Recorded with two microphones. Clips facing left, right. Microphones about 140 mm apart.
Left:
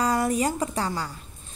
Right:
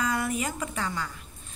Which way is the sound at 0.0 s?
35° left (ahead or behind).